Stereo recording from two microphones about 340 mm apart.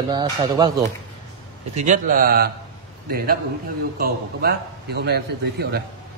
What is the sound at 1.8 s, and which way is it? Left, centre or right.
Speech, right.